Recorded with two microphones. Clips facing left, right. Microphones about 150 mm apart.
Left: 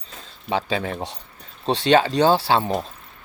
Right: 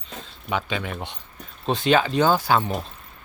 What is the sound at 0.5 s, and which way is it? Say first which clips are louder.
Speech: left 3 dB; 35° left (ahead or behind).